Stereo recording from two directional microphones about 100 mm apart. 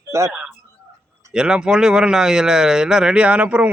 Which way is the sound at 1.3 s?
10° right (ahead or behind).